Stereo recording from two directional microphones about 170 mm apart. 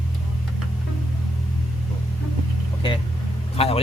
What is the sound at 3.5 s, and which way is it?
Vehicle, 35° left (ahead or behind).